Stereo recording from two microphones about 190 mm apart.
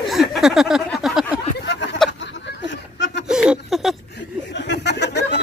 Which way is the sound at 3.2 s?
5° right (ahead or behind).